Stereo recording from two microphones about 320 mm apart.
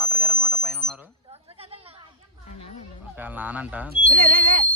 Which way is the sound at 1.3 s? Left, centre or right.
Centre.